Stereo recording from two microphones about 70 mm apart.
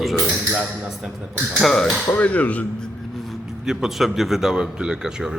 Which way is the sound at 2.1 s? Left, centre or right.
Left.